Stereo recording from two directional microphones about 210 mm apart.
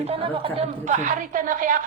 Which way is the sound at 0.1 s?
25° right (ahead or behind).